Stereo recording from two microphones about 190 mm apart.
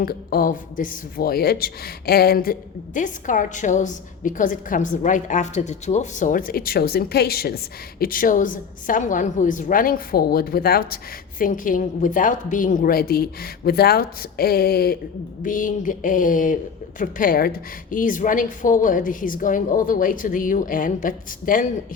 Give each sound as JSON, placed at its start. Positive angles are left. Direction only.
{"t": 0.0, "sound": "speech", "side_deg": 50}